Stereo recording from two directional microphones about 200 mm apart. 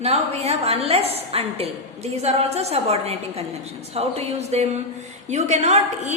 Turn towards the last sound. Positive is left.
turn(degrees=-35)  # may be behind; listen again after turning